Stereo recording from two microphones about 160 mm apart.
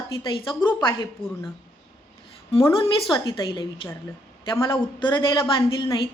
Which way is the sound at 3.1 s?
30° left (ahead or behind).